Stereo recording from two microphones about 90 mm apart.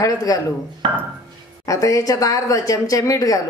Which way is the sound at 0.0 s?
40° left (ahead or behind).